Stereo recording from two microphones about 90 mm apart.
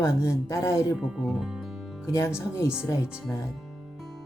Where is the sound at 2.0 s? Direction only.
30° left (ahead or behind).